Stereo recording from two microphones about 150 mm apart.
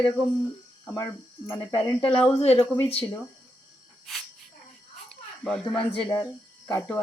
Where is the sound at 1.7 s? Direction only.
35° left (ahead or behind).